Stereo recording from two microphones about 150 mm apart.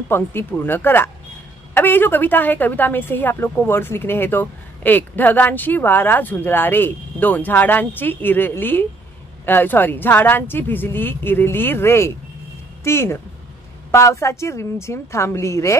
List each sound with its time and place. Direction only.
0.1 s a woman's voice: 15° left (ahead or behind)